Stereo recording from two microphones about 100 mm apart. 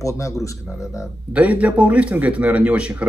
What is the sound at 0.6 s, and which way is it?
Speech, 5° right (ahead or behind).